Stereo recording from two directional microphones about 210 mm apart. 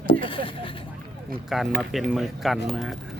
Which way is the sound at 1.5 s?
Centre (ahead or behind).